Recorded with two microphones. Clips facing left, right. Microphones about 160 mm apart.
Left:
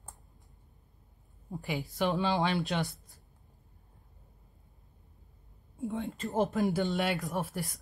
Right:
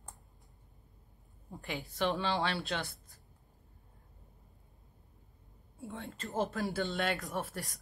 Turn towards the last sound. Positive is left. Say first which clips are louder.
# left 4 dB
turn(degrees=10)  # may be behind; listen again after turning